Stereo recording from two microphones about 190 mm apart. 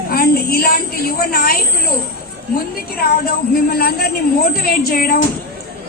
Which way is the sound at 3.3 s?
50° left (ahead or behind).